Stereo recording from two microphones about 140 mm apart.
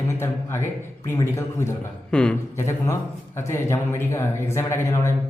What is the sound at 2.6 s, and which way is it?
A man's voice, 20° left (ahead or behind).